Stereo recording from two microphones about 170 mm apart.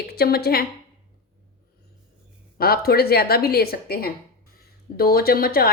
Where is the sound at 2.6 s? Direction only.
65° left (ahead or behind).